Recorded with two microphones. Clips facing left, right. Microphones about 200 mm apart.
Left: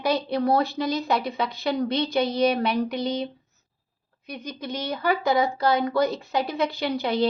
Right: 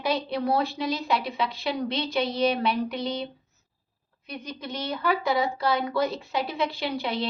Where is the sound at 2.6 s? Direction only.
40° left (ahead or behind).